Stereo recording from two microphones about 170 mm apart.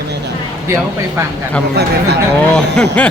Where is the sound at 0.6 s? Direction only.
15° right (ahead or behind).